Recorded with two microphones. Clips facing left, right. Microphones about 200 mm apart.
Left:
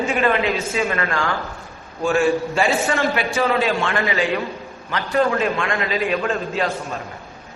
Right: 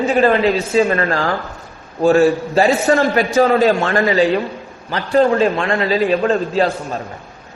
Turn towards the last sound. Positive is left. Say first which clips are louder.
# right 7 dB
turn(degrees=-35)  # may be behind; listen again after turning